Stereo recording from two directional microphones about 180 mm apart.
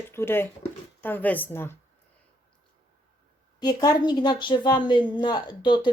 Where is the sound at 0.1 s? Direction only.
15° left (ahead or behind).